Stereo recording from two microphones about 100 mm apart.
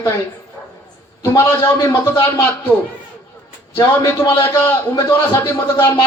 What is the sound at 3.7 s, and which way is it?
A man's voice, 25° left (ahead or behind).